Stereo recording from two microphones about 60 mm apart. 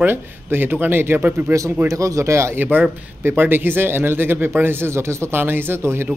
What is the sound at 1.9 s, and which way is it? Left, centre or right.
Speech, right.